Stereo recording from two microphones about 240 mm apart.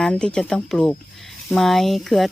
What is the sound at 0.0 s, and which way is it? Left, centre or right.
Speech, centre.